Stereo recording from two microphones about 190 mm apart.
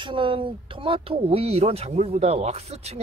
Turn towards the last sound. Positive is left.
turn(degrees=-35)  # may be behind; listen again after turning